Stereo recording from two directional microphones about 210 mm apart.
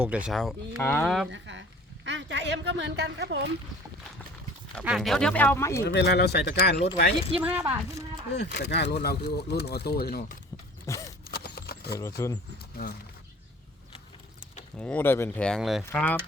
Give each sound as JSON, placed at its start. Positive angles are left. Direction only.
{"t": 0.0, "sound": "speech", "side_deg": -5}
{"t": 1.3, "sound": "speech", "side_deg": -60}
{"t": 4.7, "sound": "speech", "side_deg": 0}
{"t": 5.8, "sound": "speech", "side_deg": 55}
{"t": 7.4, "sound": "speech", "side_deg": -10}
{"t": 8.4, "sound": "speech", "side_deg": 55}
{"t": 10.9, "sound": "speech", "side_deg": 15}
{"t": 11.3, "sound": "a sound", "side_deg": 50}
{"t": 11.9, "sound": "speech", "side_deg": 15}
{"t": 14.8, "sound": "speech", "side_deg": 5}